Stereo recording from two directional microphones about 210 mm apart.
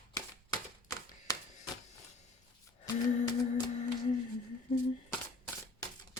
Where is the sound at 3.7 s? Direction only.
35° left (ahead or behind).